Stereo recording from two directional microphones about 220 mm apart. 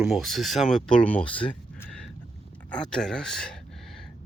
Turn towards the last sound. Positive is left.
turn(degrees=0)  # may be behind; listen again after turning